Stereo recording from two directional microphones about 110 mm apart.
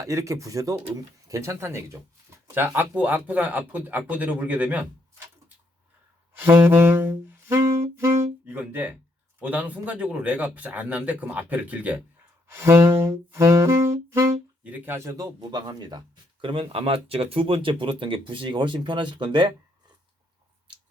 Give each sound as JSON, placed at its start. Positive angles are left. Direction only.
{"t": 0.0, "sound": "saxophone", "side_deg": -30}
{"t": 2.7, "sound": "a man's voice", "side_deg": -15}
{"t": 6.4, "sound": "saxophone", "side_deg": -20}
{"t": 8.4, "sound": "a man's voice", "side_deg": -15}
{"t": 12.5, "sound": "saxophone", "side_deg": -25}
{"t": 14.6, "sound": "speech", "side_deg": -15}
{"t": 14.9, "sound": "saxophone", "side_deg": -30}
{"t": 15.4, "sound": "speech", "side_deg": -40}
{"t": 16.4, "sound": "speech", "side_deg": -50}
{"t": 20.7, "sound": "finger snapping", "side_deg": -45}